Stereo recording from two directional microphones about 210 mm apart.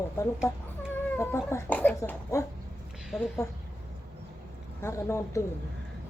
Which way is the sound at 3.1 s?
Centre (ahead or behind).